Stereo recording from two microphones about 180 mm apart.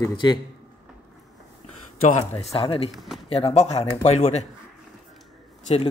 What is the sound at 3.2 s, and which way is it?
Speech, 30° left (ahead or behind).